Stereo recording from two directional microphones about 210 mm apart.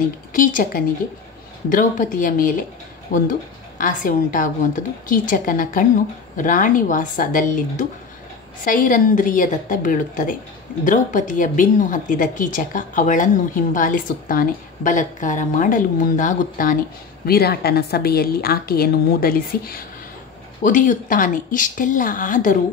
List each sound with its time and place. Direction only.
0.3 s a woman's voice: 40° left (ahead or behind)